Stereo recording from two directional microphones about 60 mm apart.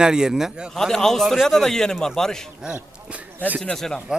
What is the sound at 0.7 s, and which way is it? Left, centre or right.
A man's voice, centre.